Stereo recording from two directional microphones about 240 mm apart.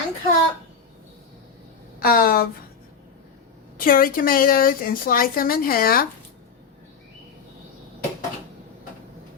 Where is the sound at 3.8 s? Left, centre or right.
Left.